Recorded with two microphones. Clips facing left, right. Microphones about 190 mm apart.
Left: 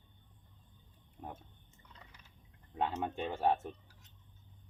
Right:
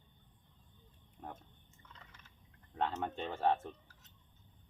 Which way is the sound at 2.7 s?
15° left (ahead or behind).